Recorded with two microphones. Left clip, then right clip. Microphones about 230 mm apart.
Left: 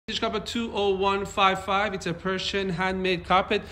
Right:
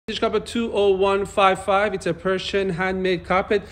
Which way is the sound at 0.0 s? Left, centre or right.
Centre.